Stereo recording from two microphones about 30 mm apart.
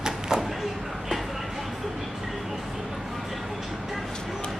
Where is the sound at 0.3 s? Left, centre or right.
Right.